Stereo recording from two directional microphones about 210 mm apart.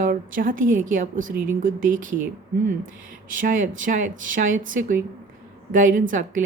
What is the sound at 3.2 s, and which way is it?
Speech, 40° right (ahead or behind).